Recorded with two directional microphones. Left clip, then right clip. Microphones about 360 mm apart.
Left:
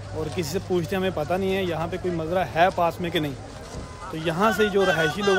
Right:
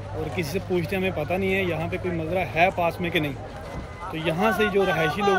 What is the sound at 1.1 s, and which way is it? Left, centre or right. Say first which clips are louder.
Speech: even; centre.